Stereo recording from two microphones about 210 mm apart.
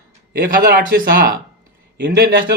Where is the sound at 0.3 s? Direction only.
45° right (ahead or behind).